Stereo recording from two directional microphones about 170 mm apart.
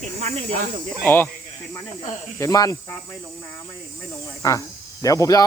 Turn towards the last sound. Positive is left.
turn(degrees=20)  # may be behind; listen again after turning